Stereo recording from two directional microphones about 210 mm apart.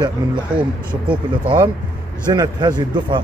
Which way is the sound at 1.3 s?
20° right (ahead or behind).